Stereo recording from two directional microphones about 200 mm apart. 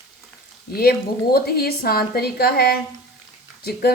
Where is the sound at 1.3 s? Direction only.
50° left (ahead or behind).